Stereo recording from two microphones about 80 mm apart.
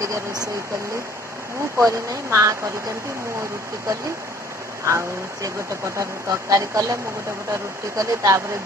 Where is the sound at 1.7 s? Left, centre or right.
Right.